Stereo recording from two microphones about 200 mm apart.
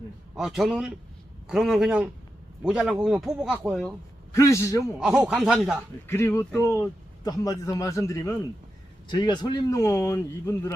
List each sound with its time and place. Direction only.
0.3 s speech: centre (ahead or behind)
4.4 s speech: 15° left (ahead or behind)
4.9 s speech: 5° right (ahead or behind)
6.1 s speech: 15° left (ahead or behind)